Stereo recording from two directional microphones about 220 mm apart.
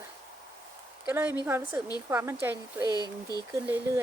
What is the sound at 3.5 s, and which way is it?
Speech, 10° right (ahead or behind).